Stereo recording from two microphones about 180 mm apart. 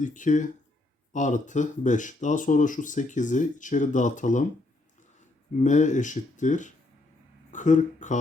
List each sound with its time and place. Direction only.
0.0 s speech: 45° left (ahead or behind)
5.6 s speech: 45° left (ahead or behind)